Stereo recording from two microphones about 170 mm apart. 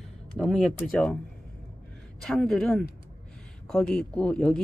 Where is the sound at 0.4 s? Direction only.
5° left (ahead or behind).